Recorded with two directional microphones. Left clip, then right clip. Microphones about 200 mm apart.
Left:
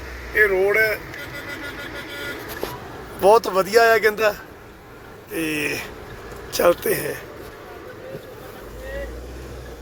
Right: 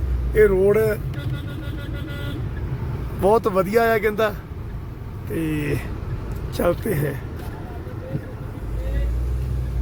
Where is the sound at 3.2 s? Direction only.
Centre (ahead or behind).